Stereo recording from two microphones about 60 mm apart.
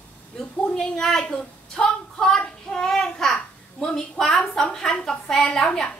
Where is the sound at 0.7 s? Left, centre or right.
Centre.